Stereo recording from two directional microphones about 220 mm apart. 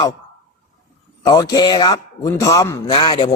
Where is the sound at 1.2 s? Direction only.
15° left (ahead or behind).